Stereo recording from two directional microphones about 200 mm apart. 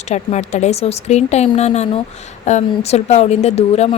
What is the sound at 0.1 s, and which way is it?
A woman's voice, 35° left (ahead or behind).